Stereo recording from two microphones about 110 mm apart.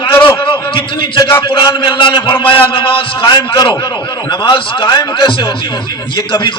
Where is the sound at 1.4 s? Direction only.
45° left (ahead or behind).